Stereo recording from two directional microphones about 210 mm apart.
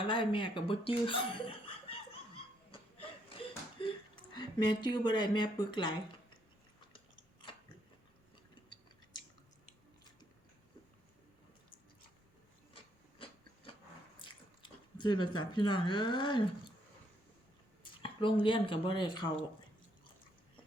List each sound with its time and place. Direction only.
0.0 s chuckle: 25° left (ahead or behind)
12.7 s a sound: 25° left (ahead or behind)
14.2 s speech: 20° left (ahead or behind)
18.0 s speech: 25° left (ahead or behind)